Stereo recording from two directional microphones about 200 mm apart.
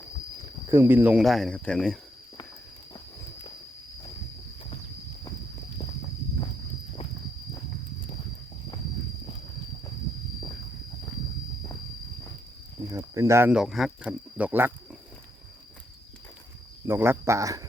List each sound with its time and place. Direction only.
0.7 s speech: 10° right (ahead or behind); by 2.0 s 5° left (ahead or behind)
12.9 s speech: 15° right (ahead or behind)
16.8 s speech: 10° right (ahead or behind)